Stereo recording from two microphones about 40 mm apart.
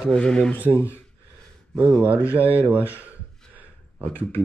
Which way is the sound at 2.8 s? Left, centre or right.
Left.